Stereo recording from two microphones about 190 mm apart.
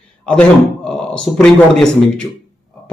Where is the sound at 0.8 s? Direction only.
5° left (ahead or behind).